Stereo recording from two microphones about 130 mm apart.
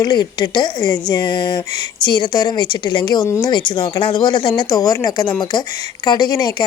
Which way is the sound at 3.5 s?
35° left (ahead or behind).